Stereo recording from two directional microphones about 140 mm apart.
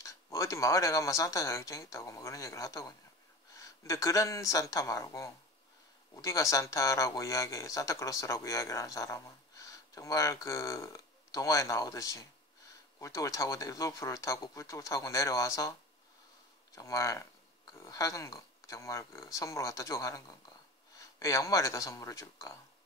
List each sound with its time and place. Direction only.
0.0 s speech: 25° left (ahead or behind)
16.7 s speech: 20° left (ahead or behind)